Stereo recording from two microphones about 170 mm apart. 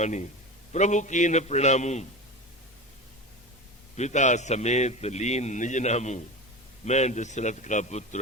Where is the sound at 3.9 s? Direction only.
45° left (ahead or behind).